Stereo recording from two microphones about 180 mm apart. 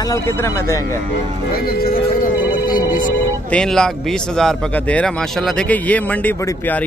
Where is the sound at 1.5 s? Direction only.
55° left (ahead or behind).